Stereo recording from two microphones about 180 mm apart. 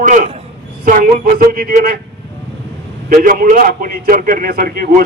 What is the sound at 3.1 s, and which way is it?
A man's voice, 50° right (ahead or behind).